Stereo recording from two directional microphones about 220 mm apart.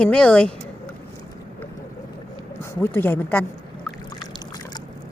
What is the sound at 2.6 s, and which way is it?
Speech, 10° left (ahead or behind).